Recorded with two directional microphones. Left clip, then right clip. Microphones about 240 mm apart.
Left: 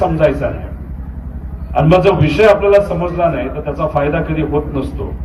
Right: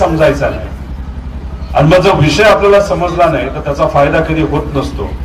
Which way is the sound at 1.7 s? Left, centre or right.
Right.